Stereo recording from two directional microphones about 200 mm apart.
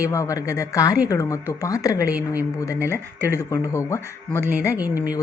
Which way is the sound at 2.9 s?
15° left (ahead or behind).